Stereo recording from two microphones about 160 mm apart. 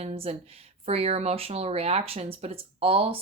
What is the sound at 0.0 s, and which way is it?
Speech, 40° right (ahead or behind).